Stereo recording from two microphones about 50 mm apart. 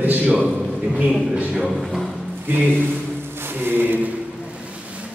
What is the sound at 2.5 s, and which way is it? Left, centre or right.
Speech, right.